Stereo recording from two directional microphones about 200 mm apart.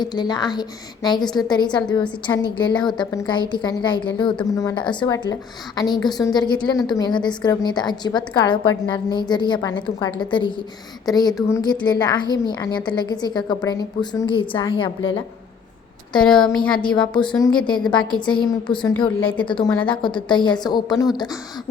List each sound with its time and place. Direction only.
0.0 s a woman's voice: 20° left (ahead or behind)
16.1 s speech: 5° left (ahead or behind)
17.2 s a woman's voice: 20° left (ahead or behind)
17.7 s speech: 5° left (ahead or behind)
18.3 s a woman's voice: 25° left (ahead or behind)